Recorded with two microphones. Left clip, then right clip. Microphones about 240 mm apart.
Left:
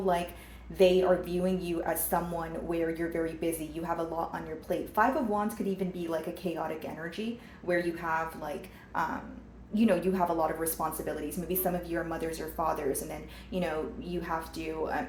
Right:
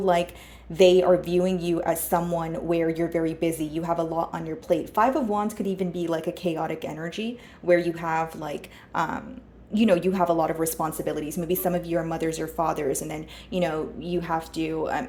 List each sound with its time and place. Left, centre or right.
0.0 s speech: right